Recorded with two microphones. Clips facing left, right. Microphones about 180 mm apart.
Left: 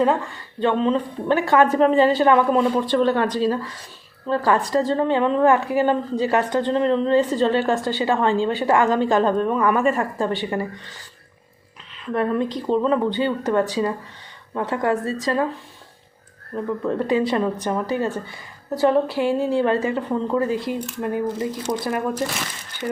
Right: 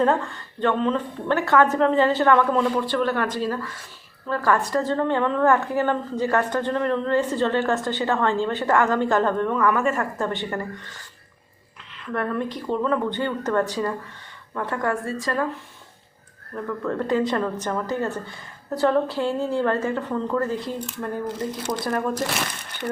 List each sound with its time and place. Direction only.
0.0 s speech: centre (ahead or behind)
0.6 s a woman's voice: 20° left (ahead or behind)
12.0 s a woman's voice: 20° left (ahead or behind)
16.6 s a woman's voice: 20° left (ahead or behind)